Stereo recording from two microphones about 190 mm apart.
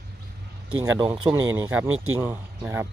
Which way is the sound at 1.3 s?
15° right (ahead or behind).